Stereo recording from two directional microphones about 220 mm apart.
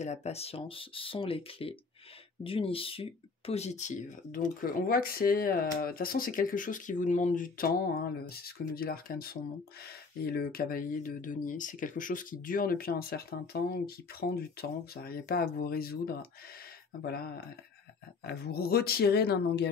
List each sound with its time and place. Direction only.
0.0 s speech: 30° left (ahead or behind); by 19.7 s 50° left (ahead or behind)